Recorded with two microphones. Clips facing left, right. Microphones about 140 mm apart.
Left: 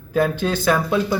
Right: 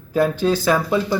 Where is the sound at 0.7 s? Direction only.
Centre (ahead or behind).